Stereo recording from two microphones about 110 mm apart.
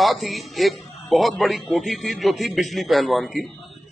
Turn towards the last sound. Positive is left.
turn(degrees=0)  # may be behind; listen again after turning